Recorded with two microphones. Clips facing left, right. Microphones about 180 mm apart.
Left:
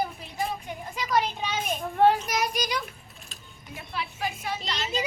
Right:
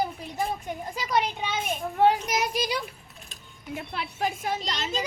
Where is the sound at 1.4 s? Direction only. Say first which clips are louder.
Even; 10° right (ahead or behind); by 2.8 s 30° right (ahead or behind).